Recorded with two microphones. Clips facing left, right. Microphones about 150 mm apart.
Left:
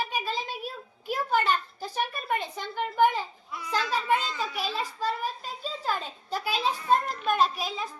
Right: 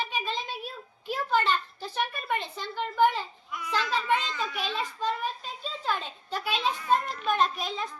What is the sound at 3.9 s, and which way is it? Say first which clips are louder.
A child's voice: left 1 dB; 5° left (ahead or behind).